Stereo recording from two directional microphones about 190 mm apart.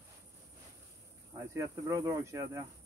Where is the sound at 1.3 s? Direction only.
15° right (ahead or behind).